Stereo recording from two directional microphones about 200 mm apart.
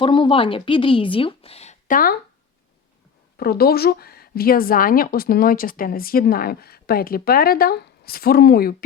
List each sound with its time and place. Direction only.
0.0 s speech: 25° left (ahead or behind); by 2.1 s 45° left (ahead or behind)
3.3 s a woman's voice: 50° left (ahead or behind)